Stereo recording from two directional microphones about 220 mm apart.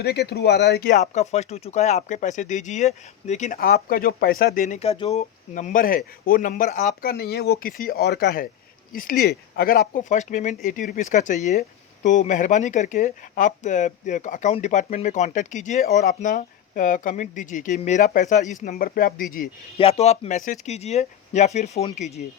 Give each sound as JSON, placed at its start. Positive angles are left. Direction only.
{"t": 0.0, "sound": "speech", "side_deg": 45}
{"t": 19.7, "sound": "speech", "side_deg": 25}